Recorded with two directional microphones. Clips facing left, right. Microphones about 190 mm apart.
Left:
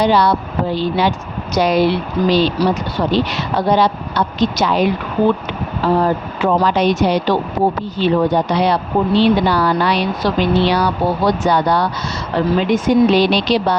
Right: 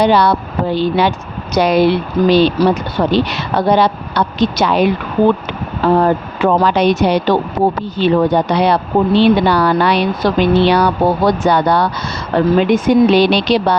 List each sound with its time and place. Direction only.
0.0 s speech: 60° right (ahead or behind)
6.0 s speech: 60° right (ahead or behind)